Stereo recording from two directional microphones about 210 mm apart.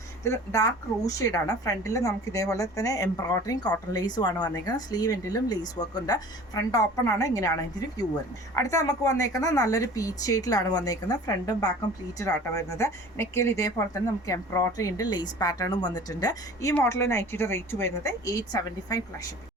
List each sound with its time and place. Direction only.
0.3 s a woman's voice: 15° left (ahead or behind)
8.5 s a woman's voice: 15° left (ahead or behind)